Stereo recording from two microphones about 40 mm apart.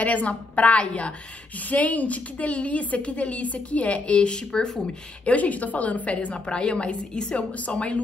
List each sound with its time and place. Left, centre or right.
0.0 s a woman's voice: left; by 4.7 s centre
5.2 s a woman's voice: left
6.3 s a woman's voice: left